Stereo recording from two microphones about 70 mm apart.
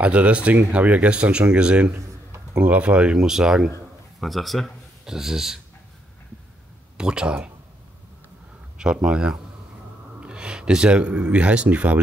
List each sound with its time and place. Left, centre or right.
0.0 s a man's voice: centre
7.0 s speech: centre
8.7 s speech: centre